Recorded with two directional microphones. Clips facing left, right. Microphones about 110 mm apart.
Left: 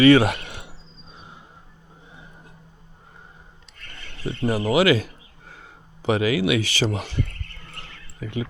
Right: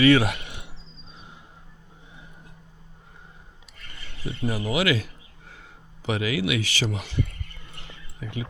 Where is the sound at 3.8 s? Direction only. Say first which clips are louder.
Left 2 dB; 10° right (ahead or behind).